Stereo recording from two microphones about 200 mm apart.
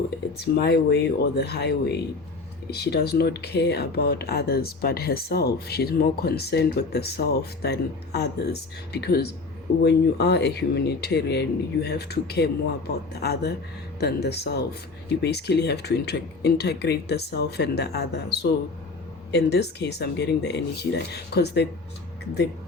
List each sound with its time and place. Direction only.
0.3 s speech: 55° left (ahead or behind)